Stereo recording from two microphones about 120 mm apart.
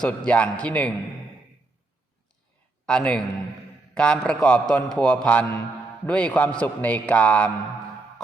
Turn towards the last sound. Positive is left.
turn(degrees=10)  # may be behind; listen again after turning